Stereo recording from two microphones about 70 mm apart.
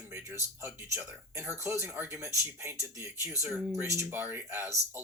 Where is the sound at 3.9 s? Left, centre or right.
Right.